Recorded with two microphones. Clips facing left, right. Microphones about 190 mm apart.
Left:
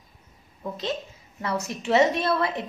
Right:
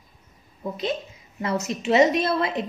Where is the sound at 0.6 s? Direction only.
15° right (ahead or behind).